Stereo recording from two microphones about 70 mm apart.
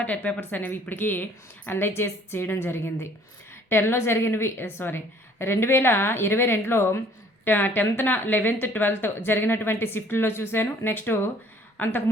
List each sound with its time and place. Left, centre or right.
0.0 s a woman's voice: centre